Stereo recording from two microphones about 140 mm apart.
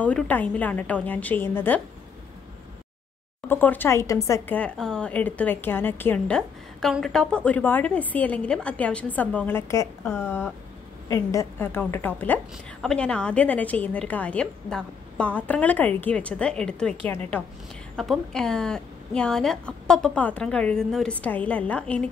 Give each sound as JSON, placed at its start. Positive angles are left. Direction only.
{"t": 0.0, "sound": "a woman's voice", "side_deg": 10}
{"t": 3.4, "sound": "a woman's voice", "side_deg": 15}
{"t": 4.6, "sound": "a woman's voice", "side_deg": 5}
{"t": 17.9, "sound": "a woman's voice", "side_deg": 0}